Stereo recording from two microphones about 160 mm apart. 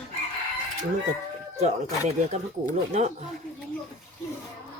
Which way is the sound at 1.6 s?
45° right (ahead or behind).